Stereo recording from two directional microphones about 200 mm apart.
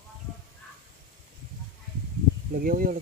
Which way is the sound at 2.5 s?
45° right (ahead or behind).